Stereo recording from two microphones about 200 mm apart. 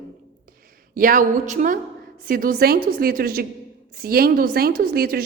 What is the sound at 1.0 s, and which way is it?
A woman's voice, 40° right (ahead or behind).